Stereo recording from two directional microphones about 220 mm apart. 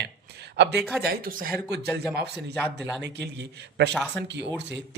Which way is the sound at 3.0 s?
50° right (ahead or behind).